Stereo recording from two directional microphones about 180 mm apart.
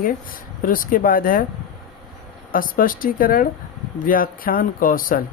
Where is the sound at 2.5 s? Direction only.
50° left (ahead or behind).